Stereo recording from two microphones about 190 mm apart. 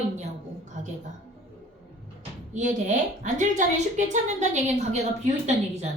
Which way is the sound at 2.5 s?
40° right (ahead or behind).